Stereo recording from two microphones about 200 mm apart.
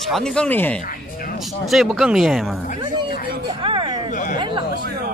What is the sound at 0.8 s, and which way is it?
Speech, 45° left (ahead or behind).